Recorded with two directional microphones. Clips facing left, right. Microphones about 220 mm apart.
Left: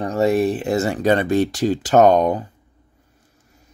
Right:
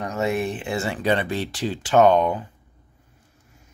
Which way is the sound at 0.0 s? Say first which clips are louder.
Left 7 dB; 35° left (ahead or behind).